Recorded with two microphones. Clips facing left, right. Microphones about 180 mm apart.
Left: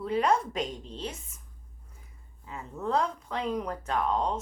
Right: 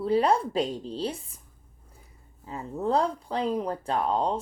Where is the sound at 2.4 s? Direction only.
35° right (ahead or behind).